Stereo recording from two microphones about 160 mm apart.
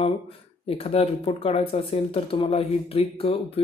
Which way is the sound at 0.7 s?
40° left (ahead or behind).